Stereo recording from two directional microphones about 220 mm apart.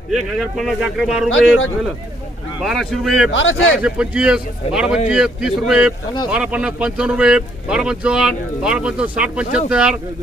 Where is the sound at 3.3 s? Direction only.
65° left (ahead or behind).